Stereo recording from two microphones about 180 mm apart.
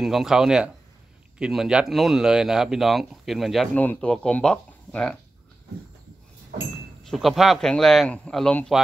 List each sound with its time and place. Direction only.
0.0 s speech: centre (ahead or behind)
6.5 s a sound: 60° right (ahead or behind)
7.1 s speech: centre (ahead or behind)